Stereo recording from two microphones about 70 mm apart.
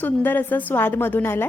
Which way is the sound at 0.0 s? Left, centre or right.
Left.